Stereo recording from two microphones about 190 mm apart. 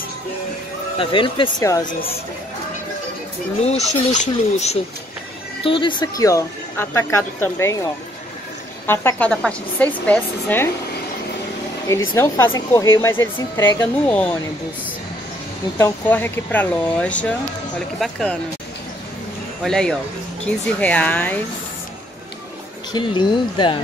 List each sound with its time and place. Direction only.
0.9 s speech: 25° left (ahead or behind)
3.6 s speech: 35° left (ahead or behind)
5.6 s speech: 25° left (ahead or behind); by 10.7 s 10° left (ahead or behind)
11.9 s speech: 15° left (ahead or behind)
15.8 s speech: 10° left (ahead or behind)
19.6 s speech: 5° left (ahead or behind)
22.9 s speech: 25° left (ahead or behind)